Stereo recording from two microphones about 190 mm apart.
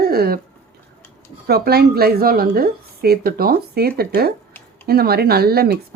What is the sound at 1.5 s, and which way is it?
A woman's voice, 55° right (ahead or behind).